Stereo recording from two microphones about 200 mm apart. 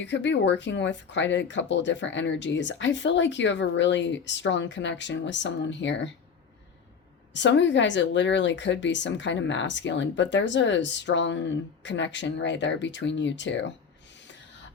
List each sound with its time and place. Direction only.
0.0 s a woman's voice: 65° left (ahead or behind)
7.3 s a woman's voice: 65° left (ahead or behind)